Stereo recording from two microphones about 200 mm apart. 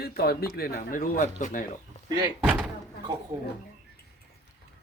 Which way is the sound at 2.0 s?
20° right (ahead or behind).